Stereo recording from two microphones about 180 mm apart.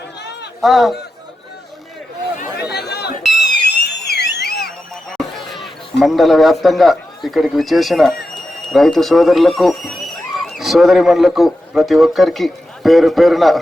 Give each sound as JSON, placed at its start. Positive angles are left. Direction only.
{"t": 0.6, "sound": "speech", "side_deg": 0}
{"t": 2.7, "sound": "chatter", "side_deg": 65}
{"t": 3.4, "sound": "a sound", "side_deg": 70}
{"t": 5.1, "sound": "a man's voice", "side_deg": 0}